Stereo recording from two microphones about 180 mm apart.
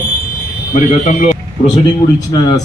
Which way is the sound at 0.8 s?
45° left (ahead or behind).